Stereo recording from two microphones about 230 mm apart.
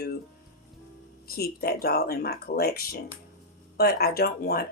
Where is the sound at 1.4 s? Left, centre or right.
Left.